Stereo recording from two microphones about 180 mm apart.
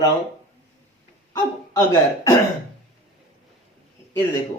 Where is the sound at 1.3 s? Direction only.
20° left (ahead or behind).